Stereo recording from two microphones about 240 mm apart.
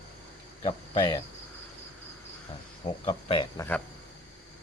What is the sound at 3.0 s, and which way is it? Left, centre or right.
Speech, left.